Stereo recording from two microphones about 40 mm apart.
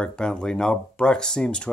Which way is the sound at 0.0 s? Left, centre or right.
Left.